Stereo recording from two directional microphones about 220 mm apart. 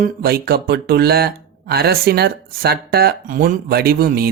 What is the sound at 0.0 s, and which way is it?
Speech, 45° right (ahead or behind).